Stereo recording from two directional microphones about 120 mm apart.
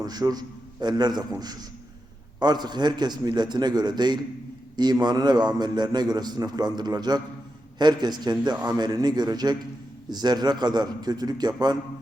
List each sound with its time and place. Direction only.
0.0 s a man's voice: 35° right (ahead or behind)